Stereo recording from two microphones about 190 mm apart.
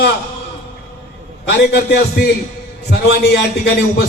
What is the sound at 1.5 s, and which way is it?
A man's voice, 60° left (ahead or behind).